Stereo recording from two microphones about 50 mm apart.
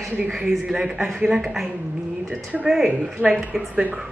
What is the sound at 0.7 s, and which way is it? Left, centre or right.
Speech, centre.